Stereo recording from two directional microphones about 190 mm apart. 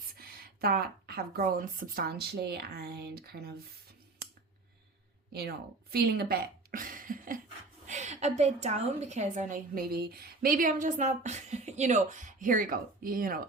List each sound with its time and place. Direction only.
0.2 s speech: 55° right (ahead or behind)
5.3 s a woman's voice: 55° right (ahead or behind)